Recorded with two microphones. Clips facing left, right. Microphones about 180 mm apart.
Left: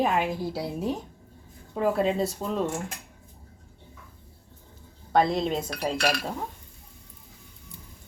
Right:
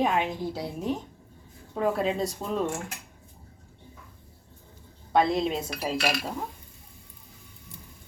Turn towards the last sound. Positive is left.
turn(degrees=-5)  # may be behind; listen again after turning